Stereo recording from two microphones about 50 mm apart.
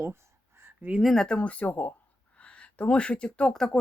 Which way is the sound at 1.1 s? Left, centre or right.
Centre.